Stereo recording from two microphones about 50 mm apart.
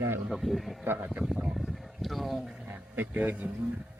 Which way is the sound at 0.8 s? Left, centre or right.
Right.